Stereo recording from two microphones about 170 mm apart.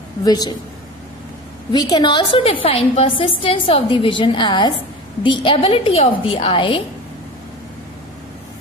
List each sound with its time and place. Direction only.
0.2 s a woman's voice: 25° left (ahead or behind)
1.7 s a woman's voice: 25° left (ahead or behind)